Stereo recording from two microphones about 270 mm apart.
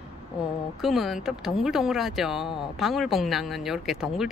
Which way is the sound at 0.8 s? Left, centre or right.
Centre.